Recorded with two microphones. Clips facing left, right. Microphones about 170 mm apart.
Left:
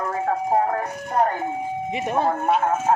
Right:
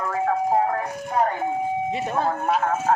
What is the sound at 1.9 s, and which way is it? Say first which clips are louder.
Speech: left 2 dB; 20° left (ahead or behind).